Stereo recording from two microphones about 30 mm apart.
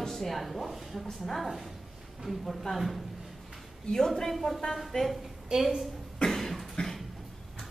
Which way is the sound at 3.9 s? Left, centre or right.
Centre.